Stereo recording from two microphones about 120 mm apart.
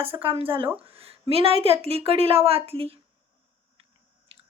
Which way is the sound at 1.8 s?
55° right (ahead or behind).